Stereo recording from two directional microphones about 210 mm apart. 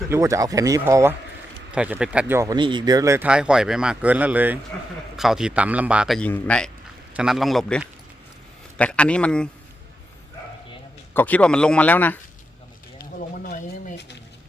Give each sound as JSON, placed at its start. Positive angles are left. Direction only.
{"t": 0.1, "sound": "speech", "side_deg": -15}
{"t": 11.1, "sound": "speech", "side_deg": 10}
{"t": 13.1, "sound": "a sound", "side_deg": 40}